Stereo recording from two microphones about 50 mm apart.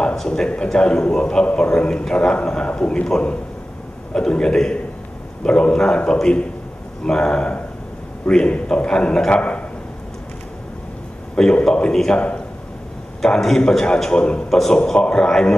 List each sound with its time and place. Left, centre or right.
0.0 s a man's voice: centre
11.3 s a man's voice: centre
13.2 s a man's voice: centre
14.5 s a man's voice: centre